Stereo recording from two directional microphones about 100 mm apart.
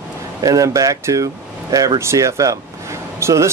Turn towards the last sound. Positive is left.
turn(degrees=-30)  # may be behind; listen again after turning